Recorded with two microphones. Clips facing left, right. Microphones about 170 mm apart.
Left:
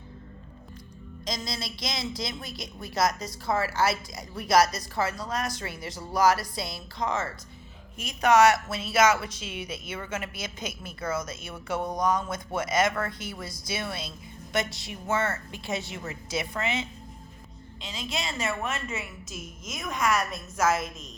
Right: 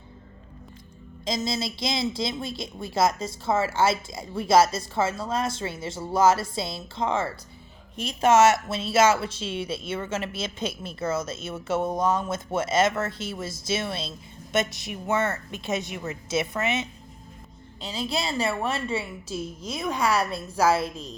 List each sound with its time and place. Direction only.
1.2 s a woman's voice: 25° right (ahead or behind)
17.7 s a woman's voice: 35° right (ahead or behind)